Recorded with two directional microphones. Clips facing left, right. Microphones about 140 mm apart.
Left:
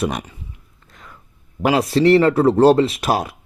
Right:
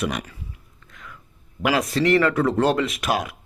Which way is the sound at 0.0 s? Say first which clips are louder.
Left 4 dB; 25° left (ahead or behind).